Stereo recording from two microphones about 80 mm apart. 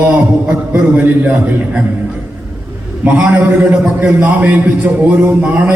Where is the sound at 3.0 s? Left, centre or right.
Centre.